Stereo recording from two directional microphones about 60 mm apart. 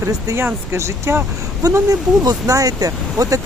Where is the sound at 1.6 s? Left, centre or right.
Right.